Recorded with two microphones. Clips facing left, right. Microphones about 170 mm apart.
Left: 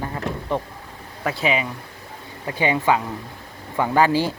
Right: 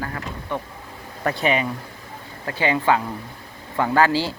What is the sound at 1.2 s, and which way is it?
Speech, 5° left (ahead or behind).